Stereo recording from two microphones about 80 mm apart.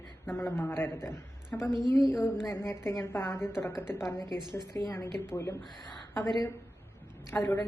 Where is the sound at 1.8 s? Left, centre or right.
Left.